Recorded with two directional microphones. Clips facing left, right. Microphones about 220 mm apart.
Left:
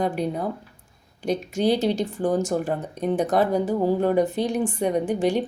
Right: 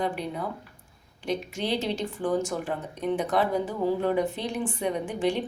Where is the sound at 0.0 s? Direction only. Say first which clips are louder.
Left 5 dB; 45° left (ahead or behind).